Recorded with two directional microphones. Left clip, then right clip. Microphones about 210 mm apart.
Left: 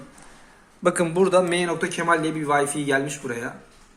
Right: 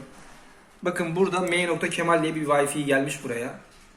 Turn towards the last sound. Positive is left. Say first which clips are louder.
# even
turn(degrees=35)  # may be behind; listen again after turning